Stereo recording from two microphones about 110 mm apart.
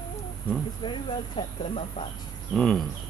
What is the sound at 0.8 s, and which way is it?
Speech, 40° left (ahead or behind).